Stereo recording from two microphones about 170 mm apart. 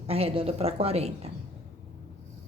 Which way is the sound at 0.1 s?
35° right (ahead or behind).